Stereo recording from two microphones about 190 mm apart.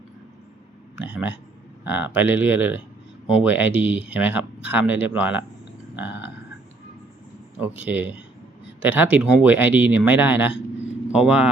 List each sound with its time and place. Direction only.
0.9 s speech: 5° right (ahead or behind)
7.6 s speech: 10° right (ahead or behind)